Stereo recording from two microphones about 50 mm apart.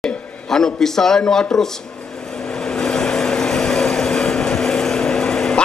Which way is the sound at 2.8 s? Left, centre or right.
Centre.